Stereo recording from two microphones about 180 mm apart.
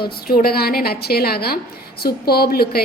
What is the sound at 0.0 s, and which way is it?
A woman's voice, 60° left (ahead or behind).